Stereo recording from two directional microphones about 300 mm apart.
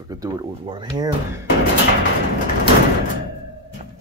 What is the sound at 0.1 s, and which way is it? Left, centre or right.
Speech, centre.